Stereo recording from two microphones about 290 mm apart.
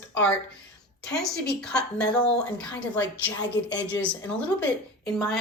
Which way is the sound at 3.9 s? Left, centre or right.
Centre.